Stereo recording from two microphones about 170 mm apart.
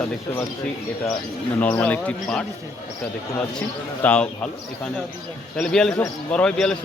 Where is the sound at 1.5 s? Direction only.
10° left (ahead or behind).